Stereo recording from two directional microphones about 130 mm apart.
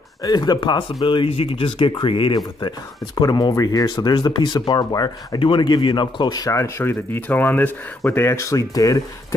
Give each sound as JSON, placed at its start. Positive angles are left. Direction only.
{"t": 0.2, "sound": "speech", "side_deg": 30}